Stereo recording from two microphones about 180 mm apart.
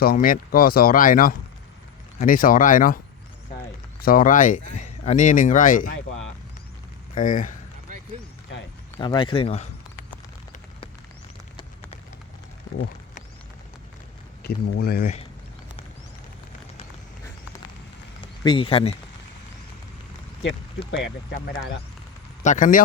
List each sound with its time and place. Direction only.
0.0 s speech: 55° left (ahead or behind)
4.0 s speech: 50° left (ahead or behind)
7.2 s speech: 45° left (ahead or behind)
9.0 s speech: 25° left (ahead or behind)
14.4 s speech: 60° left (ahead or behind)
18.4 s speech: 30° left (ahead or behind)
22.4 s speech: 45° left (ahead or behind)